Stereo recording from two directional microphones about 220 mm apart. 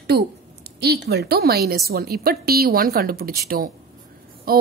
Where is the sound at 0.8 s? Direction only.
45° right (ahead or behind).